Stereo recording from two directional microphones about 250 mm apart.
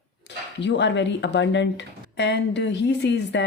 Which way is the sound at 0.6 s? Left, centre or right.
Left.